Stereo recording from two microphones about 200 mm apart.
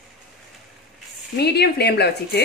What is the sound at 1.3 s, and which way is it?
Speech, 55° left (ahead or behind).